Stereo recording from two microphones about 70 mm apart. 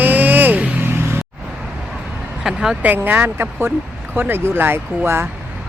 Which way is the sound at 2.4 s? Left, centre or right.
Centre.